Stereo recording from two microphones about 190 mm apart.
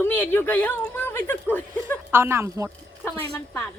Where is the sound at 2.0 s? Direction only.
15° right (ahead or behind).